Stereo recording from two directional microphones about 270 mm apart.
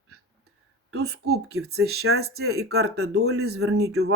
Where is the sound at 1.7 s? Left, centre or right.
Right.